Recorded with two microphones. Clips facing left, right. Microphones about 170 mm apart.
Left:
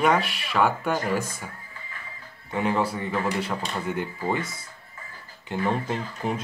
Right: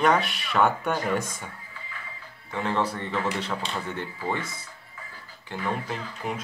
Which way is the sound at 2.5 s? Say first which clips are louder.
Left 2 dB; 10° left (ahead or behind).